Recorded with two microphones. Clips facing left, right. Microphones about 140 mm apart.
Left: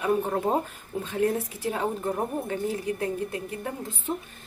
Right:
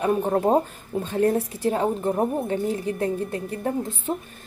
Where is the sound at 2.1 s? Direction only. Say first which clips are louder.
Right 5 dB; 30° right (ahead or behind).